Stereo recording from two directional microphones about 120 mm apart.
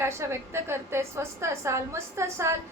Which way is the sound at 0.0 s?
20° right (ahead or behind).